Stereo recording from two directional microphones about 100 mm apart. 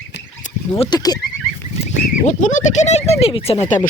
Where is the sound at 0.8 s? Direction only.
45° left (ahead or behind).